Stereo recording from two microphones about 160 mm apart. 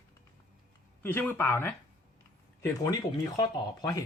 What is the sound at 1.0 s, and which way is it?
Speech, 10° left (ahead or behind).